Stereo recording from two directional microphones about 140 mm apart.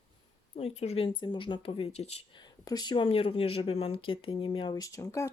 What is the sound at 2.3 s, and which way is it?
Speech, 30° left (ahead or behind).